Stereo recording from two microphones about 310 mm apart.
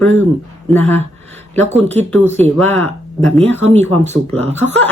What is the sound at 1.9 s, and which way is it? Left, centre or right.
Speech, centre.